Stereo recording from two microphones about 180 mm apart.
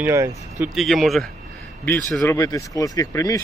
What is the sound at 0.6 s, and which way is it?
Speech, centre (ahead or behind).